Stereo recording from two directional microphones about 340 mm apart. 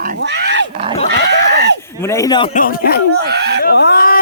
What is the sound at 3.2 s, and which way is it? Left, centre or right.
Speech, right.